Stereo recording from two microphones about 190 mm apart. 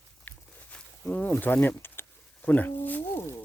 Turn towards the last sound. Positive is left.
turn(degrees=10)  # may be behind; listen again after turning